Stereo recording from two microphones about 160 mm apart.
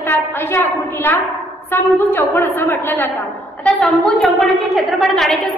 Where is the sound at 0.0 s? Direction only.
15° left (ahead or behind).